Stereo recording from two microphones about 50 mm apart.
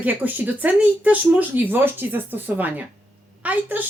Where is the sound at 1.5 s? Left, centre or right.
Right.